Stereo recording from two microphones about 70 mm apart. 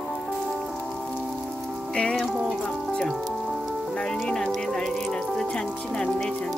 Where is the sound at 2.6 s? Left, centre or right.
Centre.